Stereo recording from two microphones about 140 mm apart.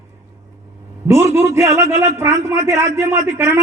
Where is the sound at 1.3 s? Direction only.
20° right (ahead or behind).